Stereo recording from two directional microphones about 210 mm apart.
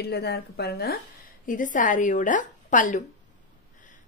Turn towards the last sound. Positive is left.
turn(degrees=35)  # may be behind; listen again after turning